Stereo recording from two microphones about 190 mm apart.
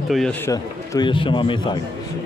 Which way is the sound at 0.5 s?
25° left (ahead or behind).